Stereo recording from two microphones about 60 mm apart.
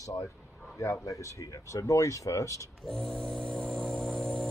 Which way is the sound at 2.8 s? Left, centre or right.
Centre.